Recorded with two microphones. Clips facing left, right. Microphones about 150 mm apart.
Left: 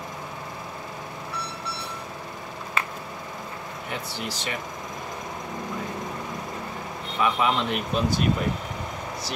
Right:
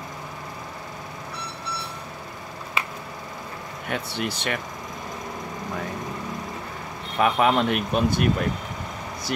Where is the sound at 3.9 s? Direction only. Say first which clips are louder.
Right 5 dB; 65° right (ahead or behind).